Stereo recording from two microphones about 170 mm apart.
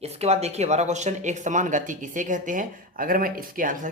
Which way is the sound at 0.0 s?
40° right (ahead or behind).